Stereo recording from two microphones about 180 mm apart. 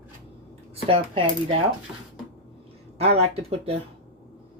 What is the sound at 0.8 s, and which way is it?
Speech, 30° right (ahead or behind).